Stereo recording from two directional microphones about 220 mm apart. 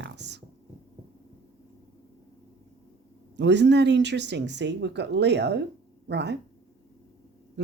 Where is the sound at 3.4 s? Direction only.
50° right (ahead or behind).